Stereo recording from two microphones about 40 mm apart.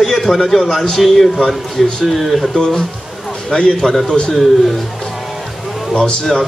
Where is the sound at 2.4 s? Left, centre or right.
Centre.